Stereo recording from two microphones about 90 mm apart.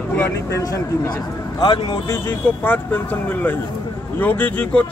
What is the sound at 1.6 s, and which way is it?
Speech, 65° left (ahead or behind).